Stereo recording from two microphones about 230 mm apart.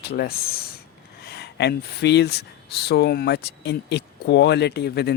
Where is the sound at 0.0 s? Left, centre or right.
Left.